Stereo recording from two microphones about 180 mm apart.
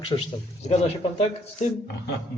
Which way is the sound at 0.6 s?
35° left (ahead or behind).